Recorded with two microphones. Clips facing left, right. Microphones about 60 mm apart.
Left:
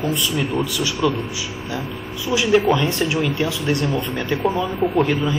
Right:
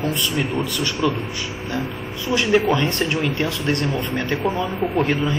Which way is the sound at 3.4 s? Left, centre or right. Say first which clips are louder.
Left 1 dB; centre.